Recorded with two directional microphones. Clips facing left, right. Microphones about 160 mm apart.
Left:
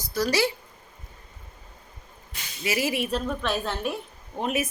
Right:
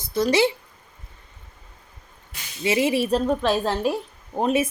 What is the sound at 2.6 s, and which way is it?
Speech, 25° right (ahead or behind).